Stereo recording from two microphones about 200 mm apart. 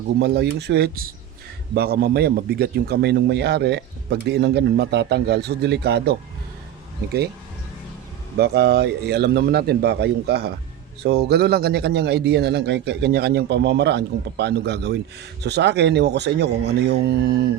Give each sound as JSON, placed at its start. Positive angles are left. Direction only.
{"t": 0.2, "sound": "a man's voice", "side_deg": -55}
{"t": 8.4, "sound": "a man's voice", "side_deg": -55}